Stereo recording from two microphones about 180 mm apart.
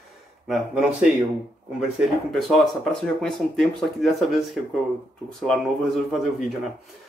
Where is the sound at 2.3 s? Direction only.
Centre (ahead or behind).